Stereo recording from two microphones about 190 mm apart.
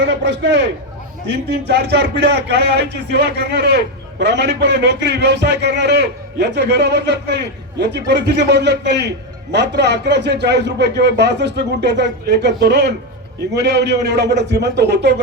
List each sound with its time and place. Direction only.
0.0 s speech: 65° right (ahead or behind)